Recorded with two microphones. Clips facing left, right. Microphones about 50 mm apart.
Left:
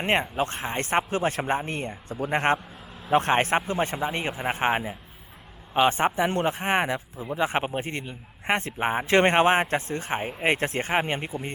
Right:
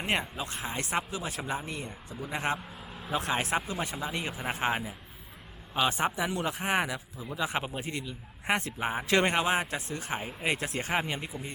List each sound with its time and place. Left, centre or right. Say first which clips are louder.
0.0 s a man's voice: left 7 dB; left